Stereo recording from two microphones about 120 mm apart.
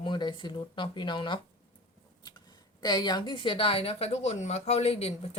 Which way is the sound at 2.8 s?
35° left (ahead or behind).